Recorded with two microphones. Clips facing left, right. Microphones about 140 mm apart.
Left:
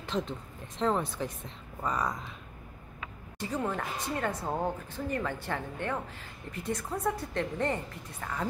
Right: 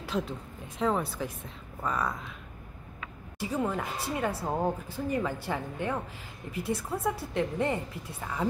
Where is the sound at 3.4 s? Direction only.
10° right (ahead or behind).